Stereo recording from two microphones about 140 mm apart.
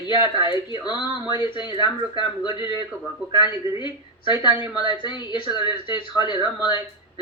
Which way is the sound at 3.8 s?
30° left (ahead or behind).